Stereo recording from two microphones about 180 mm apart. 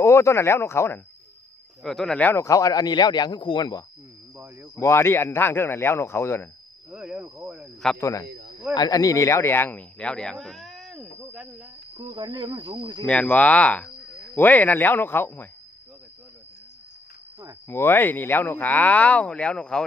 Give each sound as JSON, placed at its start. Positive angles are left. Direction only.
{"t": 0.0, "sound": "speech", "side_deg": 15}
{"t": 1.8, "sound": "a man's voice", "side_deg": 0}
{"t": 4.7, "sound": "speech", "side_deg": 15}
{"t": 6.9, "sound": "speech", "side_deg": -10}
{"t": 8.0, "sound": "speech", "side_deg": 15}
{"t": 8.3, "sound": "snake", "side_deg": -60}
{"t": 8.7, "sound": "speech", "side_deg": 20}
{"t": 12.0, "sound": "speech", "side_deg": -25}
{"t": 13.0, "sound": "speech", "side_deg": 10}
{"t": 17.6, "sound": "speech", "side_deg": 15}